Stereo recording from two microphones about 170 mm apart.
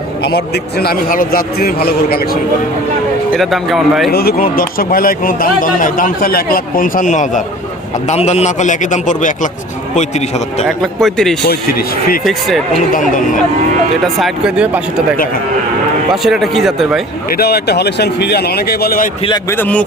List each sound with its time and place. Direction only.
0.2 s speech: 70° left (ahead or behind)
3.3 s speech: centre (ahead or behind)
4.1 s a man's voice: 65° left (ahead or behind); by 10.7 s 40° left (ahead or behind)
10.7 s speech: centre (ahead or behind)
11.4 s speech: 65° left (ahead or behind)
12.2 s speech: centre (ahead or behind)
12.9 s a man's voice: 50° left (ahead or behind)
14.0 s speech: centre (ahead or behind)
16.1 s speech: centre (ahead or behind)
17.2 s speech: 65° left (ahead or behind)
19.5 s a man's voice: 10° left (ahead or behind)